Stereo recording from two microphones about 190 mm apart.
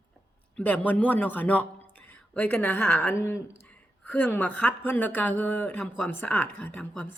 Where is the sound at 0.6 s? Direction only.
5° left (ahead or behind).